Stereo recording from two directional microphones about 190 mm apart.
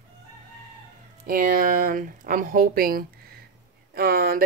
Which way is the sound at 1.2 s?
50° right (ahead or behind).